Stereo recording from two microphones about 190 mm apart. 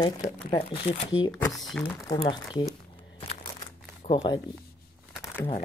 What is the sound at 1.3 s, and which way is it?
Speech, centre (ahead or behind).